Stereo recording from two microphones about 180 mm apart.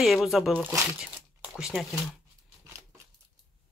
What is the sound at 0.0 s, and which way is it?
Speech, centre (ahead or behind).